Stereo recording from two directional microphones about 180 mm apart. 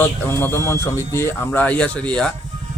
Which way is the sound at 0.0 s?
15° left (ahead or behind).